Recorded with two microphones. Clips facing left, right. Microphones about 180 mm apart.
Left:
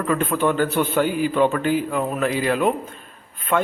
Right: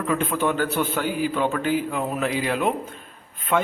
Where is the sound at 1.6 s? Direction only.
50° left (ahead or behind).